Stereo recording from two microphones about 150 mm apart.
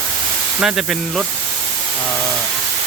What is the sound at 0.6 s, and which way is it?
Speech, 5° right (ahead or behind).